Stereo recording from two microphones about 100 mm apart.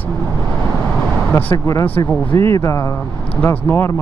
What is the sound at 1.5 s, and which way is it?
Speech, 40° left (ahead or behind).